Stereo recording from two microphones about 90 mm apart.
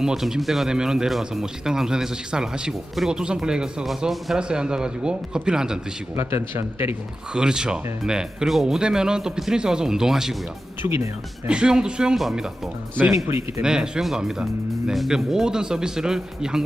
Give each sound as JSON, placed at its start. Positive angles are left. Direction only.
{"t": 0.0, "sound": "speech", "side_deg": -5}
{"t": 6.1, "sound": "a man's voice", "side_deg": -25}
{"t": 7.3, "sound": "speech", "side_deg": -10}
{"t": 10.8, "sound": "a man's voice", "side_deg": -30}
{"t": 11.4, "sound": "speech", "side_deg": -10}
{"t": 13.1, "sound": "a man's voice", "side_deg": -30}
{"t": 13.6, "sound": "speech", "side_deg": -10}